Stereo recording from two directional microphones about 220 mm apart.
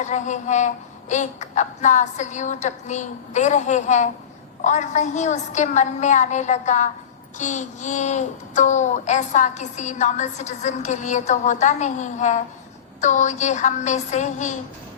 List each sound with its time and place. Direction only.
0.0 s a child's voice: 35° left (ahead or behind)